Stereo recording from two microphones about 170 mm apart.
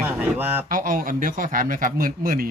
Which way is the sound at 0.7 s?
55° right (ahead or behind).